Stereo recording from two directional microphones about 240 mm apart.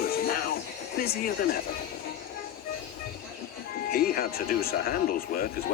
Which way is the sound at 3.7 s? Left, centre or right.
Left.